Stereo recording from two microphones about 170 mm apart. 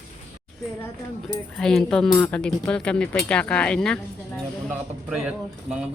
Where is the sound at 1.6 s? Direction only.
5° left (ahead or behind).